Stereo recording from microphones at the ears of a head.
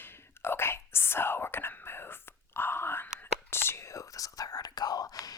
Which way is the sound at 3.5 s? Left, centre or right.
Left.